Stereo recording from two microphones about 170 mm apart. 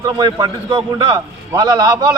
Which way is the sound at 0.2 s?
25° right (ahead or behind).